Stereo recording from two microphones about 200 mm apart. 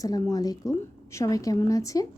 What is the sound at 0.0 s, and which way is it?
A woman's voice, 20° left (ahead or behind).